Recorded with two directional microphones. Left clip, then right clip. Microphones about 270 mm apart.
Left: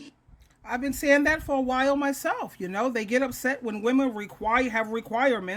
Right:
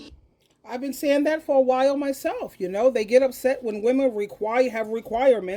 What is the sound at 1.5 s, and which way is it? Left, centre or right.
Speech, left.